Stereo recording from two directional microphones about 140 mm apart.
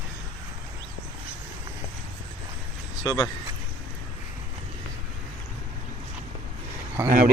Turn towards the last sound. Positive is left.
turn(degrees=-75)  # may be behind; listen again after turning